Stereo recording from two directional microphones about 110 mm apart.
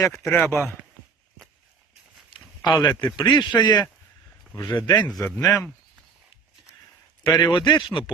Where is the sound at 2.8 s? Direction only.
40° left (ahead or behind).